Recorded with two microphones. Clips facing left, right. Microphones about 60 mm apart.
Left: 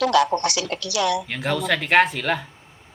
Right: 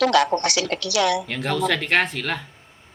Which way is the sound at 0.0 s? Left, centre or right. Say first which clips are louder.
Even; right.